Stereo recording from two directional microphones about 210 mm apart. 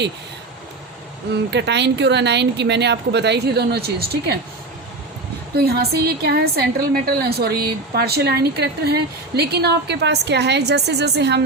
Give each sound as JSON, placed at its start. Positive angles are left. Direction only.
{"t": 1.3, "sound": "a woman's voice", "side_deg": -55}
{"t": 5.5, "sound": "a woman's voice", "side_deg": -50}